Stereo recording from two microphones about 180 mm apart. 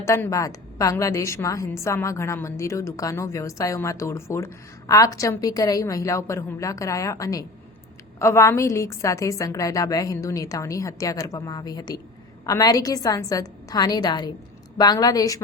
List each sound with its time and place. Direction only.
0.0 s a woman's voice: 15° left (ahead or behind)